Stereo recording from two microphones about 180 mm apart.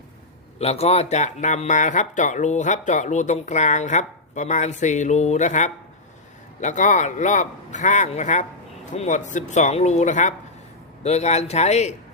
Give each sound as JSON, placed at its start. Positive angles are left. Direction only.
{"t": 0.6, "sound": "a man's voice", "side_deg": 35}